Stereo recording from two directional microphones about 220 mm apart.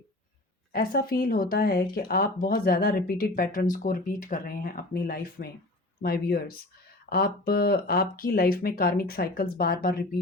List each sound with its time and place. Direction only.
0.7 s speech: 40° left (ahead or behind)